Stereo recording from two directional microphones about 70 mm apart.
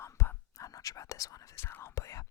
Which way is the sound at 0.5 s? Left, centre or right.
Left.